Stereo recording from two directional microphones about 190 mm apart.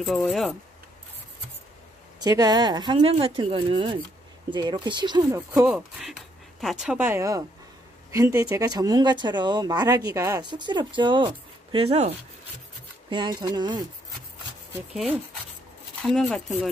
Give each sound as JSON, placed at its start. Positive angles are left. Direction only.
{"t": 0.0, "sound": "speech", "side_deg": 0}
{"t": 2.2, "sound": "speech", "side_deg": -20}
{"t": 5.7, "sound": "speech", "side_deg": 0}
{"t": 16.0, "sound": "speech", "side_deg": 5}